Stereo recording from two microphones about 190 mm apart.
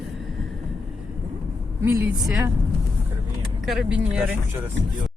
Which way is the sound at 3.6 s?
5° right (ahead or behind).